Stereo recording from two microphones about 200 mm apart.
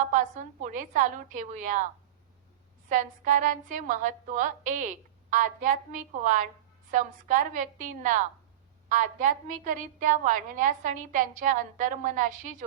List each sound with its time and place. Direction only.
0.1 s a woman's voice: 40° right (ahead or behind)
2.9 s a woman's voice: 40° right (ahead or behind)